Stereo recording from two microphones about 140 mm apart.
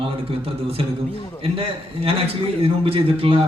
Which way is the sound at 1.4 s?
40° right (ahead or behind).